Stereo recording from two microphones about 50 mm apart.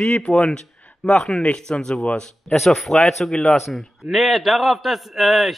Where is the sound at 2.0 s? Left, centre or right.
Left.